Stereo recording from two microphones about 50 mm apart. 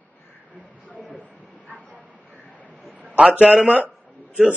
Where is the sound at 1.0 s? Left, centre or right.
Left.